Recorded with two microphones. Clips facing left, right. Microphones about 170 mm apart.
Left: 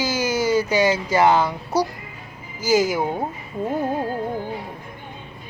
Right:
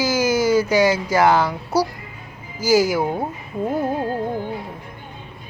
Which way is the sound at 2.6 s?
10° right (ahead or behind).